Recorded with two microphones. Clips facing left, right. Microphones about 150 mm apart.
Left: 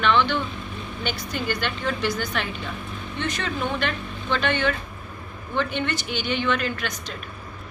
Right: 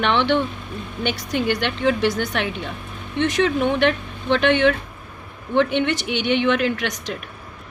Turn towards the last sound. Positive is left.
turn(degrees=-70)  # may be behind; listen again after turning